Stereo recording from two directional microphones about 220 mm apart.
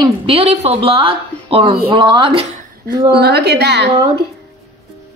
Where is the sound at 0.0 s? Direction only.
25° right (ahead or behind).